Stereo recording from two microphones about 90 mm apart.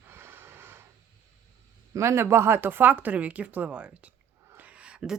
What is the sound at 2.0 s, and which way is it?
Speech, 30° right (ahead or behind).